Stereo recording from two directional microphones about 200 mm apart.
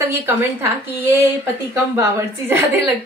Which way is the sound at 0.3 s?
10° right (ahead or behind).